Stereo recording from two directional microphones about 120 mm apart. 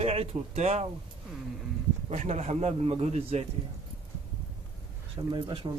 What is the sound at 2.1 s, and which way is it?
Speech, 65° right (ahead or behind).